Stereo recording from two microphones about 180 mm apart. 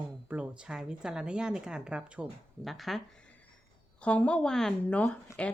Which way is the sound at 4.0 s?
5° left (ahead or behind).